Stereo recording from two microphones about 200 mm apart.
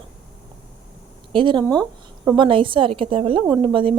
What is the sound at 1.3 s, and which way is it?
Speech, 25° right (ahead or behind).